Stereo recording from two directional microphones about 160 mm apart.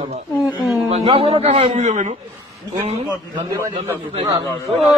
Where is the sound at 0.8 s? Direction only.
40° right (ahead or behind).